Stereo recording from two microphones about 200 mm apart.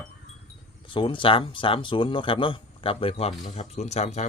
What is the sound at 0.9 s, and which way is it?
Speech, 25° left (ahead or behind).